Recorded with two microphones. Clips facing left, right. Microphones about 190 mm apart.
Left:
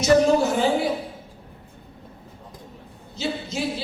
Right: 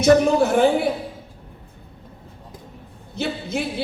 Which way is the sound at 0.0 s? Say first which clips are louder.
Right 2 dB; 55° right (ahead or behind).